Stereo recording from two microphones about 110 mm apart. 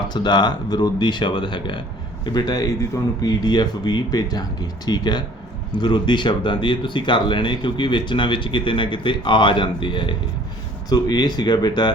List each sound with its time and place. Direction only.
0.1 s speech: 40° left (ahead or behind)
10.8 s speech: 35° left (ahead or behind)